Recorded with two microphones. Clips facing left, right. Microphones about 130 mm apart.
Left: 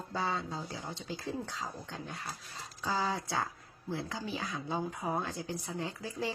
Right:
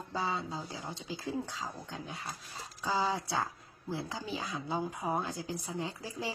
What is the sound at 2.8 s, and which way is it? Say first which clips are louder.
Speech: right 1 dB; 25° right (ahead or behind).